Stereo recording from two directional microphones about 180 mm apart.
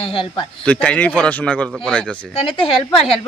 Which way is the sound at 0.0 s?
30° left (ahead or behind).